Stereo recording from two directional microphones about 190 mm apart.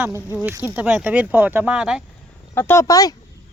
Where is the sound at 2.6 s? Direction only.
15° left (ahead or behind).